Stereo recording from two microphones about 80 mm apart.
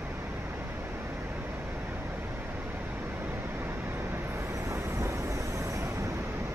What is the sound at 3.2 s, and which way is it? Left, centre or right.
Vehicle, right.